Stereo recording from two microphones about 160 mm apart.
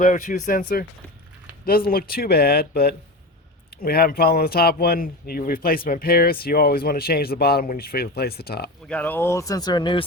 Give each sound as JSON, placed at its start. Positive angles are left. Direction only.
{"t": 0.0, "sound": "speech", "side_deg": 50}
{"t": 1.6, "sound": "speech", "side_deg": 70}
{"t": 8.9, "sound": "speech", "side_deg": 10}